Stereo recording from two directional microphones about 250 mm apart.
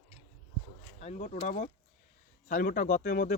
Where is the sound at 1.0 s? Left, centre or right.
Left.